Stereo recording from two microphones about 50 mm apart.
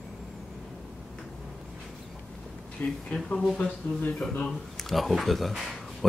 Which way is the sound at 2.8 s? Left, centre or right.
Left.